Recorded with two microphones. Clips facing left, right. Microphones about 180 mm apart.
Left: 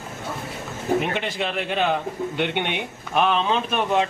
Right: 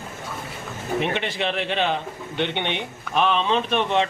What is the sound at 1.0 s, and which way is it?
A man's voice, centre (ahead or behind).